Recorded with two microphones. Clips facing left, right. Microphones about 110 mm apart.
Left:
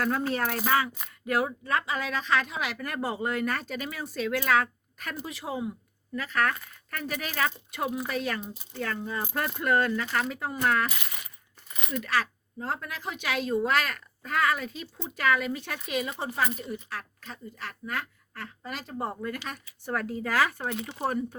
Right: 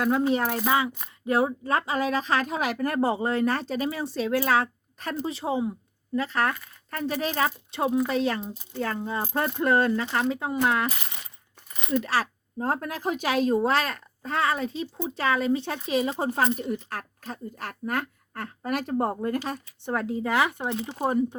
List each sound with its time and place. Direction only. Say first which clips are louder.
0.0 s speech: right 4 dB; 15° right (ahead or behind)
10.8 s speech: right 3 dB; 35° right (ahead or behind); by 19.1 s 55° right (ahead or behind)
19.1 s speech: right 7 dB; 40° right (ahead or behind); by 21.3 s 20° right (ahead or behind)